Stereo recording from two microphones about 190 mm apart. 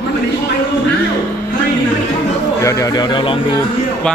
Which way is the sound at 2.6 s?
15° left (ahead or behind).